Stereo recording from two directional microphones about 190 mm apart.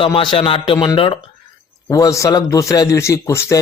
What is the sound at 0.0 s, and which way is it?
A man's voice, 25° left (ahead or behind).